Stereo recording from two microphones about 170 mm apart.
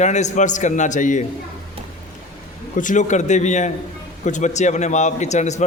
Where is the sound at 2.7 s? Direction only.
50° left (ahead or behind).